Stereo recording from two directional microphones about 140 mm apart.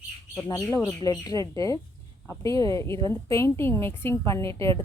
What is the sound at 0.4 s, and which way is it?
A woman's voice, 25° left (ahead or behind).